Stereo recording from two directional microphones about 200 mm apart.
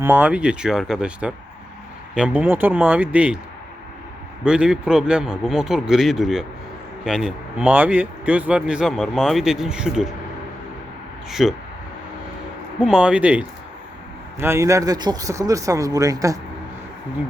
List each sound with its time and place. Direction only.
0.0 s speech: 5° right (ahead or behind)
4.4 s speech: 5° right (ahead or behind)
11.3 s speech: centre (ahead or behind)
12.8 s speech: 5° right (ahead or behind)